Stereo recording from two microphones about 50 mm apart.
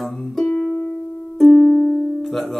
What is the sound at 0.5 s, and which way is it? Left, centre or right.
Music, centre.